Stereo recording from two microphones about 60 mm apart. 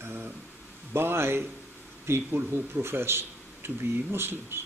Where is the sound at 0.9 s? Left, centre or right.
Right.